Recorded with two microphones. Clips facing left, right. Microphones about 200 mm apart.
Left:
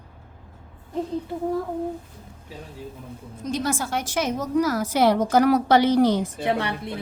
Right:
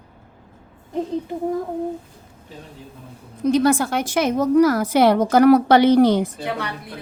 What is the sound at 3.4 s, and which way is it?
A woman's voice, 60° right (ahead or behind).